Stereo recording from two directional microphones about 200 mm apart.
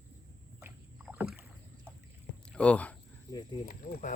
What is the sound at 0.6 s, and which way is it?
Rowboat, 10° right (ahead or behind).